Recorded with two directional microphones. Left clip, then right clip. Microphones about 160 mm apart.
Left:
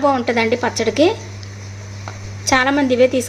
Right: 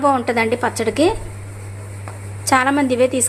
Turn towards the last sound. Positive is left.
turn(degrees=5)  # may be behind; listen again after turning